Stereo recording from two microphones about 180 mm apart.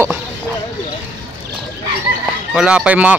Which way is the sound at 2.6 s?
5° right (ahead or behind).